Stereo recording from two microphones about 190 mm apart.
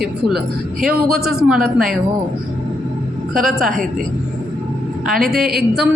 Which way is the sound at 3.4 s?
Centre (ahead or behind).